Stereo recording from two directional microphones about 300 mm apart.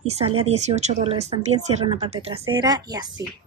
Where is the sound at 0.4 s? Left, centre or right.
Right.